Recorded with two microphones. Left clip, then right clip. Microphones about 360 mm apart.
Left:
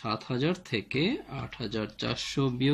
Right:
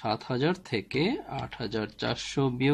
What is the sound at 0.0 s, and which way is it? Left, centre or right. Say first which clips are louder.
Speech: right 2 dB; right.